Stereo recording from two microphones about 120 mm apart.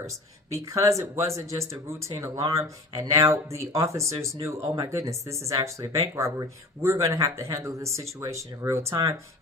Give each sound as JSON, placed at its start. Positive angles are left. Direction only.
{"t": 0.5, "sound": "speech", "side_deg": -25}